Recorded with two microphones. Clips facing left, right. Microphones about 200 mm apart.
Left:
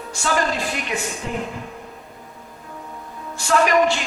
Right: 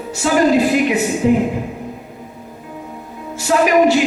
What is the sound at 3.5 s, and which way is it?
Speech, 15° right (ahead or behind).